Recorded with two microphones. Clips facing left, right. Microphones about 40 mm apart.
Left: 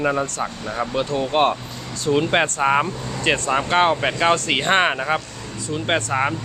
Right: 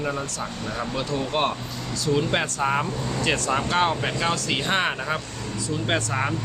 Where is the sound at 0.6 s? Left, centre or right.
Centre.